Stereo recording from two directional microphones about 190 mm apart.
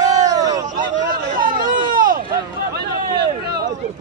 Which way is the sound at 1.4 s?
25° right (ahead or behind).